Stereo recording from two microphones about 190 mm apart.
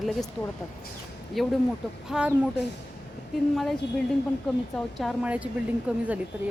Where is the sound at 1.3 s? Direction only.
Centre (ahead or behind).